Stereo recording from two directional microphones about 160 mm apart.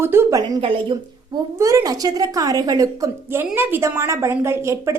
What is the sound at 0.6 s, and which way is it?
A woman's voice, 35° right (ahead or behind).